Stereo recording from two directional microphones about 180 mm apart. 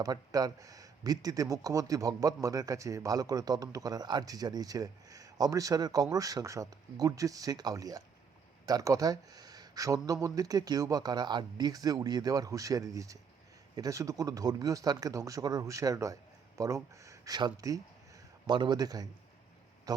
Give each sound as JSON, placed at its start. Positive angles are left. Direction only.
{"t": 0.0, "sound": "speech", "side_deg": -20}